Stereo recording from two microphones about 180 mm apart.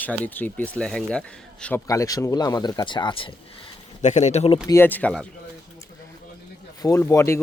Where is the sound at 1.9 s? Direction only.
20° left (ahead or behind).